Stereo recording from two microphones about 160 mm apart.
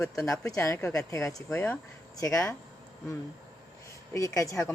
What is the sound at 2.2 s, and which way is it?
Speech, 20° left (ahead or behind).